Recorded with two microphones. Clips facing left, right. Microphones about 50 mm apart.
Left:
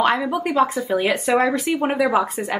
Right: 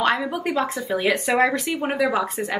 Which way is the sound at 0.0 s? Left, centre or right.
Centre.